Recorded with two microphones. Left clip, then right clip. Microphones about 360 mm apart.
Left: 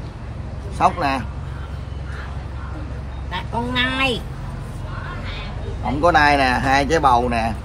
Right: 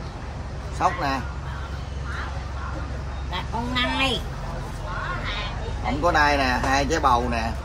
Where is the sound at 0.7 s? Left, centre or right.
Left.